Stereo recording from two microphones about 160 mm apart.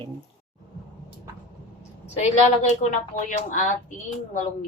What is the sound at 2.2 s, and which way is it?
A woman's voice, 45° left (ahead or behind).